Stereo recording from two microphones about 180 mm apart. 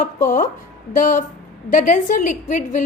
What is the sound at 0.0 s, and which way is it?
A woman's voice, 45° left (ahead or behind).